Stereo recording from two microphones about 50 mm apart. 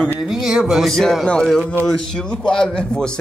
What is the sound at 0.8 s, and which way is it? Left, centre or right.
Speech, centre.